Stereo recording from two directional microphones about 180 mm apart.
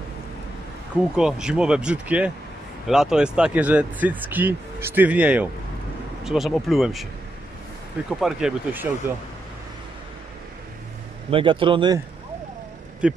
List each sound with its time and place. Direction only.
1.1 s speech: 5° right (ahead or behind)
8.1 s speech: 5° right (ahead or behind)
11.2 s a man's voice: 30° right (ahead or behind)
13.0 s speech: 5° right (ahead or behind)